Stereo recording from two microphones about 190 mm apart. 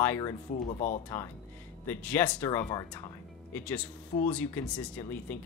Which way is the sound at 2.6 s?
20° left (ahead or behind).